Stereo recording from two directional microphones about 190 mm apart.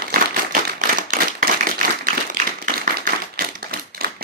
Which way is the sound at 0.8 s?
40° right (ahead or behind).